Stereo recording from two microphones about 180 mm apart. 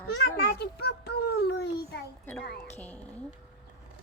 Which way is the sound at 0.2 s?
65° left (ahead or behind).